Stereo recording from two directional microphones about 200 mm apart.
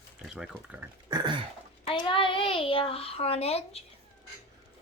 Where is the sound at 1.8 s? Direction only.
25° left (ahead or behind).